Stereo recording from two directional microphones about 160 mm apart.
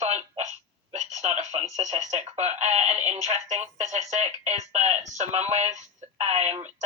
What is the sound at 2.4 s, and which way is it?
Music, 45° right (ahead or behind).